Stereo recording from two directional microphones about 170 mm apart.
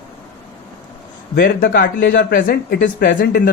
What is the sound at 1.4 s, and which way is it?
Speech, 85° left.